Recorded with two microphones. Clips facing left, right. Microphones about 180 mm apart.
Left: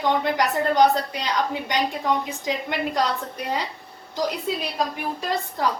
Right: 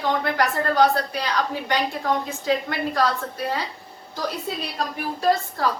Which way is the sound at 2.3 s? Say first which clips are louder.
Right 3 dB; 15° left (ahead or behind).